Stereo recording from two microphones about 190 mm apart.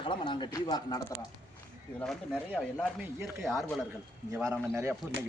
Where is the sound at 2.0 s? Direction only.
5° left (ahead or behind).